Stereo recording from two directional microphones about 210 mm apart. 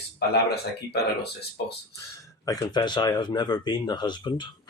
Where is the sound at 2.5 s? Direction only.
20° left (ahead or behind).